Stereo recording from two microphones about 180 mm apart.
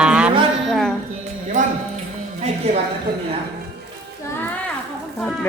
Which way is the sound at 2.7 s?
35° right (ahead or behind).